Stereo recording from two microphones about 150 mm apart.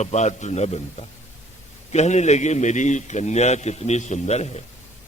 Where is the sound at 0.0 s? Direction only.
50° left (ahead or behind).